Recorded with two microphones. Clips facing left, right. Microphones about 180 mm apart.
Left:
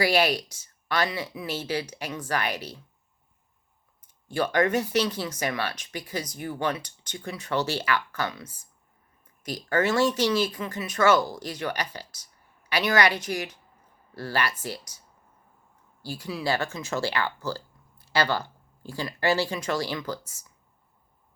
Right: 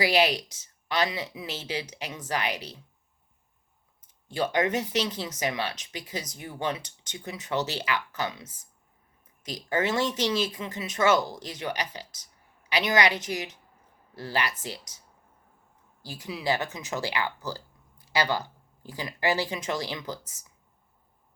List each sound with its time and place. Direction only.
0.0 s speech: 20° right (ahead or behind)
4.3 s speech: 20° right (ahead or behind)
16.0 s speech: 20° right (ahead or behind)